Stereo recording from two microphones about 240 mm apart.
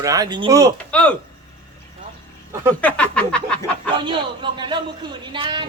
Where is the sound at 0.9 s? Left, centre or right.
Centre.